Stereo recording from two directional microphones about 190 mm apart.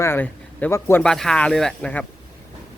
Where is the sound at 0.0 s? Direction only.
10° left (ahead or behind).